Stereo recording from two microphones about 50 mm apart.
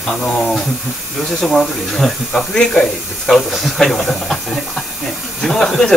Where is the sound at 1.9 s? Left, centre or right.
Centre.